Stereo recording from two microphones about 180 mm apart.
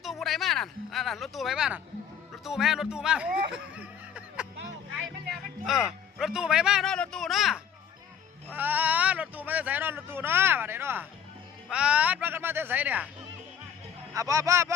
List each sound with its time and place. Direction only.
0.0 s speech: centre (ahead or behind)
5.6 s a man's voice: centre (ahead or behind)
14.1 s speech: 15° right (ahead or behind)